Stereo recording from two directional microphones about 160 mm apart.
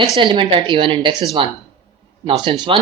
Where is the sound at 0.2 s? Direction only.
30° right (ahead or behind).